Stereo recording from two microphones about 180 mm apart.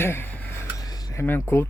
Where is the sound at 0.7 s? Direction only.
20° left (ahead or behind).